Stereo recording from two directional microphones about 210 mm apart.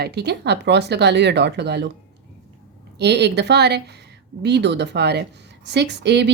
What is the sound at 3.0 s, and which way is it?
Speech, 55° right (ahead or behind).